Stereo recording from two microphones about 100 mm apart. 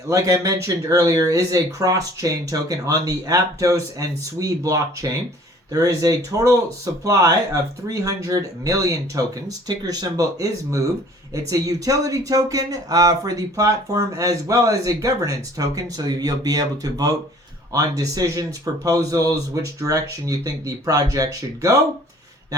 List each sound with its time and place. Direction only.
0.1 s speech: 35° right (ahead or behind)